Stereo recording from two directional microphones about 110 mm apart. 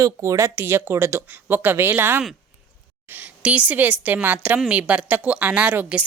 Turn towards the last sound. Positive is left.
turn(degrees=-15)  # may be behind; listen again after turning